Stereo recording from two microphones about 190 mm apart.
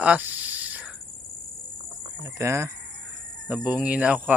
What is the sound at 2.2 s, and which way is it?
Speech, 15° right (ahead or behind).